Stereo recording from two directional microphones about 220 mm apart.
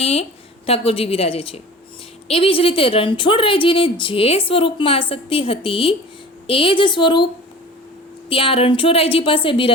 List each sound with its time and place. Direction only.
0.0 s a woman's voice: 25° left (ahead or behind)
8.3 s a woman's voice: 25° left (ahead or behind)